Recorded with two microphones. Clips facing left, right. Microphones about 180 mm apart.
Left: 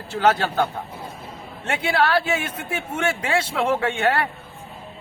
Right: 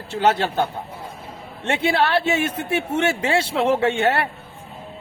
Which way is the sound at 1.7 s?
25° right (ahead or behind).